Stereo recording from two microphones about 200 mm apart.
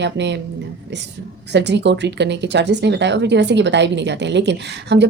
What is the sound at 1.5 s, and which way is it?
Speech, 60° right (ahead or behind).